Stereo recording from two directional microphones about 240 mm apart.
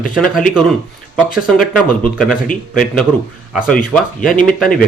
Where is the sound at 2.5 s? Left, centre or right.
Centre.